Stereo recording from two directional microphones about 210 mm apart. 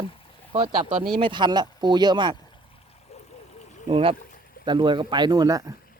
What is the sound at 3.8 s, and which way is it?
Speech, 25° right (ahead or behind).